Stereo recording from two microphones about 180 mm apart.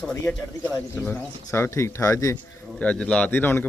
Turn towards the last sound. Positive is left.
turn(degrees=10)  # may be behind; listen again after turning